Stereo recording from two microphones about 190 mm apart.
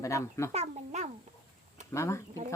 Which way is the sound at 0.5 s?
40° right (ahead or behind).